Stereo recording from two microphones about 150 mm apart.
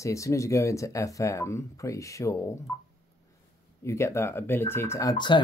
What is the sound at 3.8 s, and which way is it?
Speech, 20° left (ahead or behind).